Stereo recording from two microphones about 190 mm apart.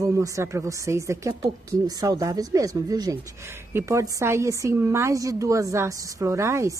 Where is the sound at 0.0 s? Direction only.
15° right (ahead or behind).